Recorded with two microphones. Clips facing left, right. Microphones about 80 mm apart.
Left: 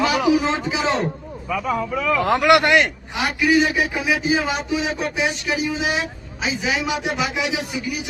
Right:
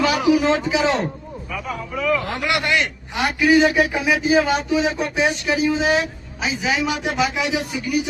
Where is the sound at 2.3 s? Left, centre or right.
Left.